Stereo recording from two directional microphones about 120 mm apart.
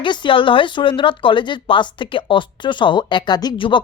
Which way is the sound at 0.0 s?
40° left (ahead or behind).